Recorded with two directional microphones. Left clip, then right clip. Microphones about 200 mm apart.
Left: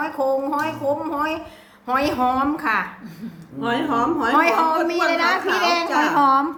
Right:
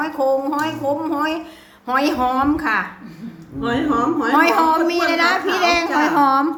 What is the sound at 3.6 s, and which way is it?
Speech, 10° left (ahead or behind).